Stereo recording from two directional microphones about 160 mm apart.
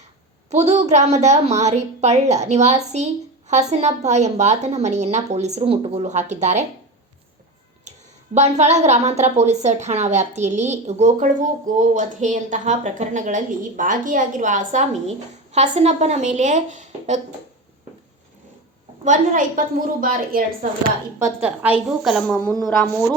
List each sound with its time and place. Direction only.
0.5 s a woman's voice: 45° right (ahead or behind)
8.4 s a woman's voice: 45° right (ahead or behind)
19.0 s a woman's voice: 50° right (ahead or behind)
21.4 s a woman's voice: 10° right (ahead or behind)